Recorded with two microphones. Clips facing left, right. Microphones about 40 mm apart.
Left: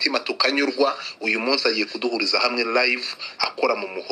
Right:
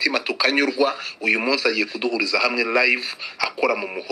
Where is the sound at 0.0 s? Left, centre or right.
Right.